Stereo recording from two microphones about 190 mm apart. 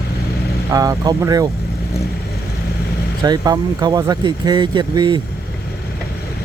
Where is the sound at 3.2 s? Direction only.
20° right (ahead or behind).